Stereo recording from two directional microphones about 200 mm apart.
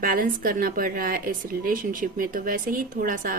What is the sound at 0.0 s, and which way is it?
Speech, 45° right (ahead or behind).